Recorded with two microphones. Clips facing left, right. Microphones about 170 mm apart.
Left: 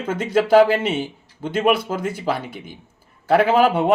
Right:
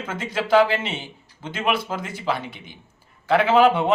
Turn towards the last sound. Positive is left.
turn(degrees=45)  # may be behind; listen again after turning